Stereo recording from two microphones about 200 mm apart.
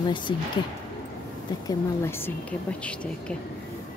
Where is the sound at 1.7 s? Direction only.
10° left (ahead or behind).